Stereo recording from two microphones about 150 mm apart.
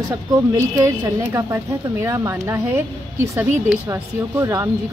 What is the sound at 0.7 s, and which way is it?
A woman's voice, 25° right (ahead or behind).